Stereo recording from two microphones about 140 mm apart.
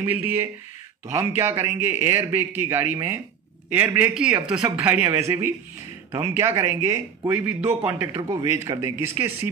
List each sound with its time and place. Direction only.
0.0 s speech: 15° right (ahead or behind)
6.3 s speech: 20° right (ahead or behind)
8.2 s speech: 25° right (ahead or behind)